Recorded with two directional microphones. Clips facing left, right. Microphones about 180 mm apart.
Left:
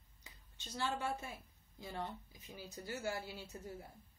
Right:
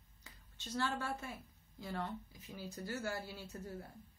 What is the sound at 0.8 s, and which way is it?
A woman's voice, 20° left (ahead or behind).